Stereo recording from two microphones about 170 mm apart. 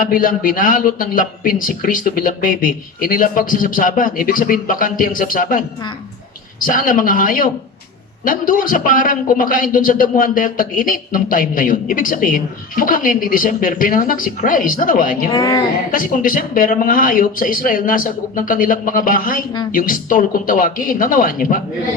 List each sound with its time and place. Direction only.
0.0 s a man's voice: 55° left (ahead or behind)
15.3 s a woman's voice: 20° left (ahead or behind)
15.9 s a man's voice: 50° left (ahead or behind)